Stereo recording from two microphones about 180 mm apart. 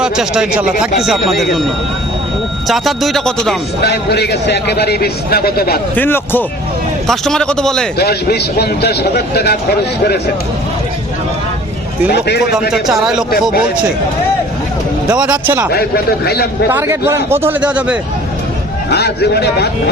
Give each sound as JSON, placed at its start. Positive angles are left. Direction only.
{"t": 0.0, "sound": "speech", "side_deg": -5}
{"t": 2.6, "sound": "speech", "side_deg": 0}
{"t": 3.8, "sound": "a man's voice", "side_deg": 65}
{"t": 5.9, "sound": "a man's voice", "side_deg": 10}
{"t": 7.9, "sound": "a man's voice", "side_deg": 65}
{"t": 12.1, "sound": "a man's voice", "side_deg": 65}
{"t": 12.7, "sound": "speech", "side_deg": 0}
{"t": 15.0, "sound": "a man's voice", "side_deg": -5}
{"t": 15.7, "sound": "a man's voice", "side_deg": 60}
{"t": 16.6, "sound": "a man's voice", "side_deg": -15}
{"t": 18.9, "sound": "a man's voice", "side_deg": 65}